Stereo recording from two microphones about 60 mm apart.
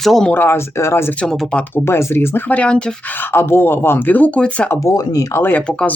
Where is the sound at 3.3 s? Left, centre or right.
Left.